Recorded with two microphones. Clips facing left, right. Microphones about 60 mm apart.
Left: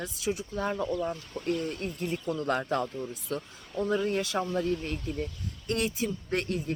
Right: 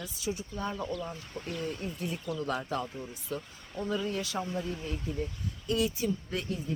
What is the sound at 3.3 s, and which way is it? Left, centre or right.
Speech, left.